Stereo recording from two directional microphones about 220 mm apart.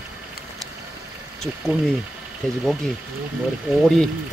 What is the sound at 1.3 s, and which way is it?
Speech, centre (ahead or behind).